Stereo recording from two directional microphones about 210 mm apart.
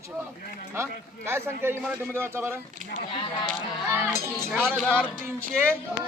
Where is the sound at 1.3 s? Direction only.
10° right (ahead or behind).